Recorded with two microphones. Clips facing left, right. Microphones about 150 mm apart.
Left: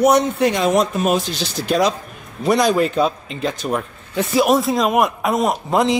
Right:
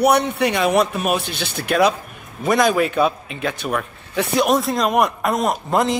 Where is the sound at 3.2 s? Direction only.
60° right (ahead or behind).